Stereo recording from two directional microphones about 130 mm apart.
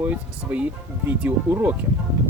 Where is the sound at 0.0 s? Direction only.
10° right (ahead or behind).